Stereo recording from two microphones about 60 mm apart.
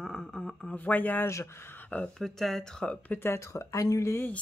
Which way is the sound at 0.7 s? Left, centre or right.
Left.